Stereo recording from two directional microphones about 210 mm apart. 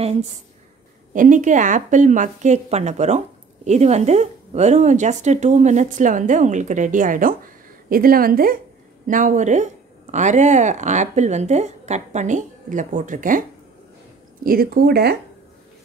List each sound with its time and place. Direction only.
0.0 s a woman's voice: 30° right (ahead or behind); by 15.1 s 50° right (ahead or behind)